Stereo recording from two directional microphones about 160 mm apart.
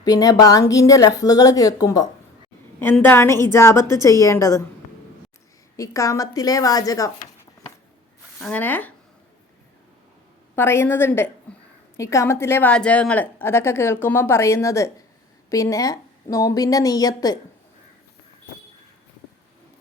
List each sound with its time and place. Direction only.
0.0 s a woman's voice: 20° left (ahead or behind)
5.7 s a woman's voice: 20° left (ahead or behind)
8.4 s a woman's voice: 5° left (ahead or behind)
10.5 s a woman's voice: 15° left (ahead or behind)